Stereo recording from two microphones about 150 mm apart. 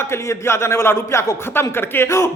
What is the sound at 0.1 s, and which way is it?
Speech, 15° left (ahead or behind).